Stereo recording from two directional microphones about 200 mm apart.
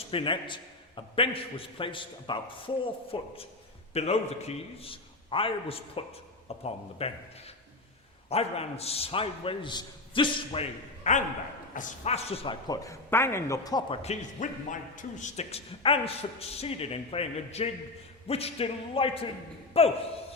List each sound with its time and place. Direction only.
0.1 s a man's voice: 25° left (ahead or behind)
14.0 s a man's voice: 35° left (ahead or behind)